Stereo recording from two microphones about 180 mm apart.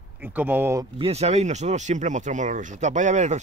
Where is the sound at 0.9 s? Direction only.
35° right (ahead or behind).